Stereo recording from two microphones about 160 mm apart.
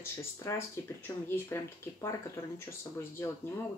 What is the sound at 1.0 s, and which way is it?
Speech, 15° left (ahead or behind).